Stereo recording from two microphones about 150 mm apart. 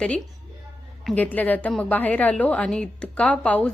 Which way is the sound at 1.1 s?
10° left (ahead or behind).